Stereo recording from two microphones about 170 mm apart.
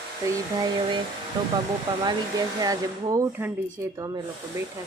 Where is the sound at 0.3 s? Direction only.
25° right (ahead or behind).